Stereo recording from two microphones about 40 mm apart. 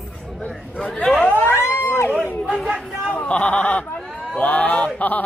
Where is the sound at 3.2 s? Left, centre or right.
Left.